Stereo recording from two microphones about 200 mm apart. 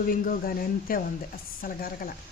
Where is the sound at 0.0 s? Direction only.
45° left (ahead or behind).